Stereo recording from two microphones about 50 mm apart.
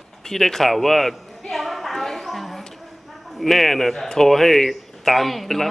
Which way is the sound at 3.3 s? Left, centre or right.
Centre.